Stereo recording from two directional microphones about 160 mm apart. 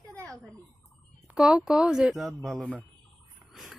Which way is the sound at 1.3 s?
5° right (ahead or behind).